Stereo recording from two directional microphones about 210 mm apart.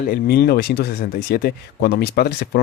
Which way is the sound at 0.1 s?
50° left (ahead or behind).